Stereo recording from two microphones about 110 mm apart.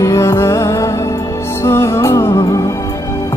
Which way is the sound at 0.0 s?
25° left (ahead or behind).